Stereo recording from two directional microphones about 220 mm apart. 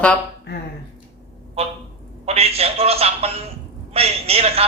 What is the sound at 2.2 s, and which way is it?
A man's voice, 25° right (ahead or behind).